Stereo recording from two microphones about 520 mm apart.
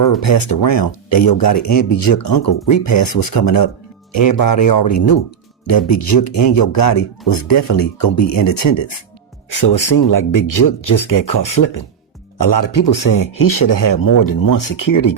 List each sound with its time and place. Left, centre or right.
0.0 s speech: left
2.7 s speech: left